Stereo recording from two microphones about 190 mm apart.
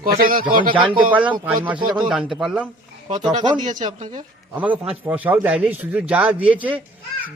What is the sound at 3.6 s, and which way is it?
Speech, 40° right (ahead or behind).